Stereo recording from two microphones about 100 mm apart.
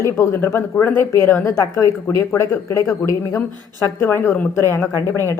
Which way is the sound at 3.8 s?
25° left (ahead or behind).